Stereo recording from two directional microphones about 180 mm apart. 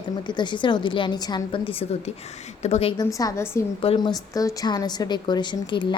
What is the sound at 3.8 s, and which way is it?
A woman's voice, 25° left (ahead or behind).